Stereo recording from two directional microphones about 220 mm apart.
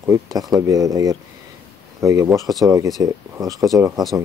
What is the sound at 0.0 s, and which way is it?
Speech, 15° right (ahead or behind).